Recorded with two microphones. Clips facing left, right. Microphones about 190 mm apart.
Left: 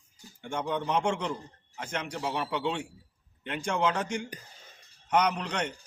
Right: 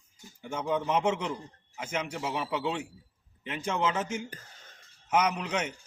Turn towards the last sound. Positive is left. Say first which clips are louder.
# even
turn(degrees=-5)  # may be behind; listen again after turning